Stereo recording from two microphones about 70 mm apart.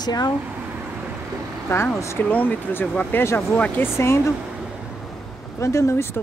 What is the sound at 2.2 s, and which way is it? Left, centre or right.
Speech, left.